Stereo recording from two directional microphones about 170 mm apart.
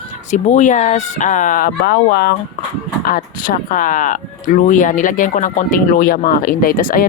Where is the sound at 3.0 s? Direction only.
55° left (ahead or behind).